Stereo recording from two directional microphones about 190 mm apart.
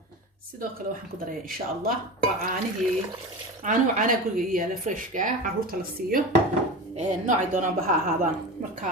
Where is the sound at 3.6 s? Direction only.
45° right (ahead or behind).